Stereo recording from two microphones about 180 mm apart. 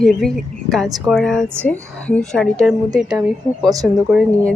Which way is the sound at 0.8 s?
20° right (ahead or behind).